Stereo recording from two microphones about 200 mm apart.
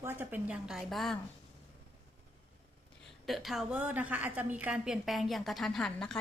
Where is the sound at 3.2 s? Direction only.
Centre (ahead or behind).